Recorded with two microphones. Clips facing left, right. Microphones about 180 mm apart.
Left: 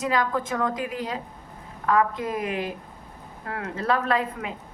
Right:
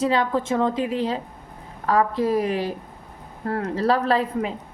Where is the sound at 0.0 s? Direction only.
30° right (ahead or behind).